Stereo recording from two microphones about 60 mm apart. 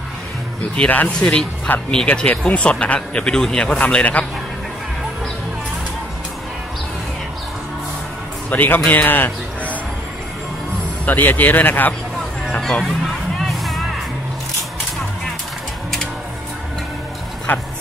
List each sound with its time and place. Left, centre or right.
0.7 s speech: left
2.1 s speech: centre
8.5 s a man's voice: left
11.1 s speech: left
12.4 s speech: centre
12.8 s music: centre
17.5 s speech: left